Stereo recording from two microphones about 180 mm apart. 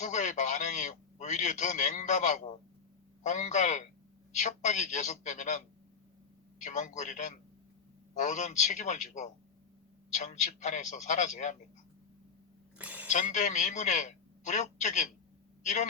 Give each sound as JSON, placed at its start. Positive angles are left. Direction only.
{"t": 0.0, "sound": "a sound", "side_deg": 40}
{"t": 3.2, "sound": "a man's voice", "side_deg": 40}
{"t": 12.8, "sound": "speech", "side_deg": -10}
{"t": 13.1, "sound": "a man's voice", "side_deg": 45}